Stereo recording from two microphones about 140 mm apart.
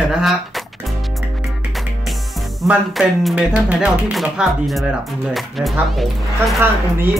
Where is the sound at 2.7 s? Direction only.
5° right (ahead or behind).